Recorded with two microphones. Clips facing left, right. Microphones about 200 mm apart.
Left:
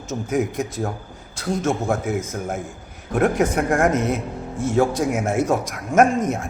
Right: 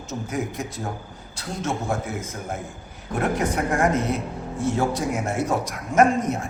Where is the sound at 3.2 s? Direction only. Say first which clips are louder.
Left 5 dB; 50° left (ahead or behind).